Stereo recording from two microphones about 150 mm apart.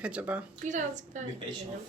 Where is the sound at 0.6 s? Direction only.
55° right (ahead or behind).